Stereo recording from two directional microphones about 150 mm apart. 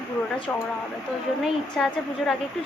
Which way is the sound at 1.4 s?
Centre (ahead or behind).